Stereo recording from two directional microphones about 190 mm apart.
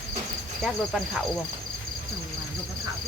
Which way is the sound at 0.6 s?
Centre (ahead or behind).